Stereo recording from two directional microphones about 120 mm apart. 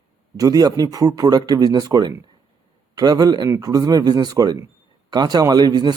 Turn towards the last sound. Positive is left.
turn(degrees=-35)  # may be behind; listen again after turning